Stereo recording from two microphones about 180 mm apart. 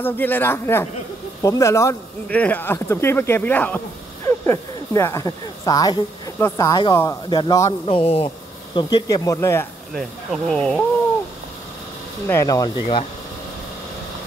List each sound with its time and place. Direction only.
0.0 s speech: 10° left (ahead or behind)
7.8 s speech: 30° left (ahead or behind)
8.7 s speech: 20° left (ahead or behind)
9.9 s speech: centre (ahead or behind)
12.3 s speech: 15° left (ahead or behind)